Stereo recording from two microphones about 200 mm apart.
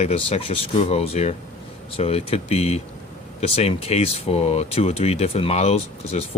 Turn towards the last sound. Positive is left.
turn(degrees=30)  # may be behind; listen again after turning